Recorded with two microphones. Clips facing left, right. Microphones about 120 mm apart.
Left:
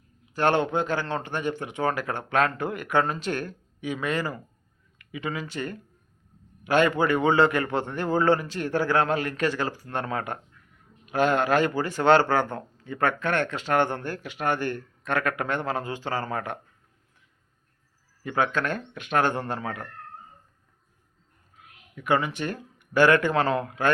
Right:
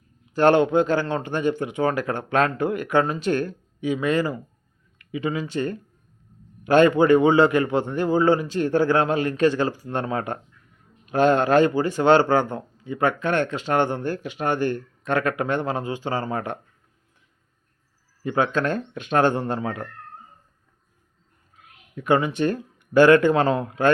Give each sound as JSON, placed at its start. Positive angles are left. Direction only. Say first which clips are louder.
{"t": 0.5, "sound": "speech", "louder": "right 6 dB", "side_deg": -15}
{"t": 0.8, "sound": "a man's voice", "louder": "right 6 dB", "side_deg": 15}
{"t": 1.0, "sound": "speech", "louder": "right 5 dB", "side_deg": -15}
{"t": 18.2, "sound": "speech", "louder": "right 4 dB", "side_deg": -25}
{"t": 22.0, "sound": "speech", "louder": "right 5 dB", "side_deg": -20}